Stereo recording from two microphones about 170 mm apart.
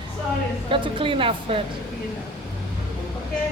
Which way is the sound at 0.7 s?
30° right (ahead or behind).